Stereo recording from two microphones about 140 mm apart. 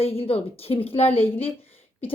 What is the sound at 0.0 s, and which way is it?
A woman's voice, 45° left (ahead or behind).